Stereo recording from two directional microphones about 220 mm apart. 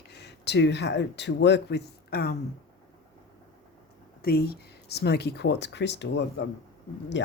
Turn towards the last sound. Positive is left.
turn(degrees=55)  # may be behind; listen again after turning